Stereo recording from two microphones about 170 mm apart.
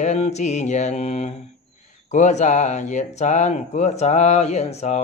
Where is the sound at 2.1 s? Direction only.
40° left (ahead or behind).